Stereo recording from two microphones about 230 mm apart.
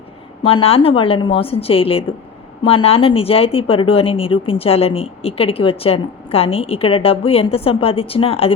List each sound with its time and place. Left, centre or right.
0.4 s speech: left